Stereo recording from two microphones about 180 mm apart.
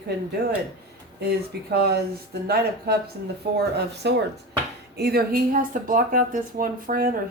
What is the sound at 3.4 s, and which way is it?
Speech, 65° right (ahead or behind).